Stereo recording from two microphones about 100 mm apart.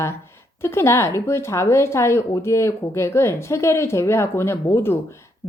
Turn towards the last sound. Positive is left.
turn(degrees=25)  # may be behind; listen again after turning